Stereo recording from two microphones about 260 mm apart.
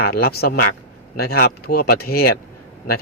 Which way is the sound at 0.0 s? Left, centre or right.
Left.